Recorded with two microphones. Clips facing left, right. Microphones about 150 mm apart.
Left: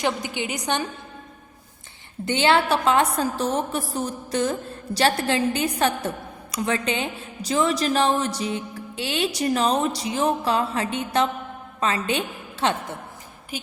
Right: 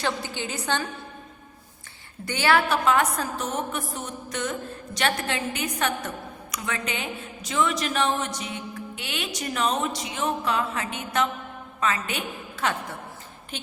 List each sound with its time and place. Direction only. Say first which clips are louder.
0.0 s a woman's voice: left 3 dB; 15° left (ahead or behind)
2.2 s a woman's voice: left 3 dB; 25° left (ahead or behind)
13.5 s a woman's voice: left 4 dB; 10° left (ahead or behind)